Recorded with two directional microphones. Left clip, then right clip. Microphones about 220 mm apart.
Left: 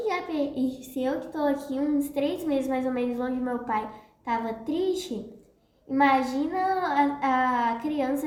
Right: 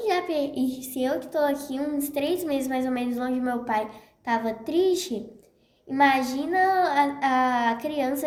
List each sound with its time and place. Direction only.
0.0 s a child's voice: 50° right (ahead or behind)